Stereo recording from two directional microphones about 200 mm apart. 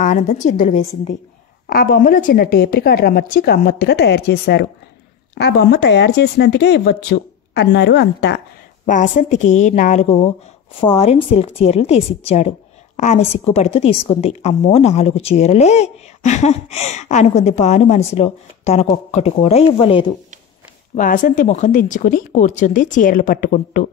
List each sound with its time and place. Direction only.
0.0 s a woman's voice: 40° left (ahead or behind)
1.7 s a woman's voice: 45° left (ahead or behind)
8.8 s a woman's voice: 40° left (ahead or behind)
20.9 s a woman's voice: 40° left (ahead or behind)